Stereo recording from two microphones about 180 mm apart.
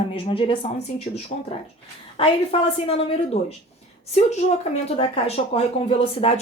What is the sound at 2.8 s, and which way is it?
Speech, 35° left (ahead or behind).